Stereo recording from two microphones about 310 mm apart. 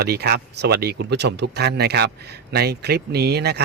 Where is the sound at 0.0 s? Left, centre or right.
Right.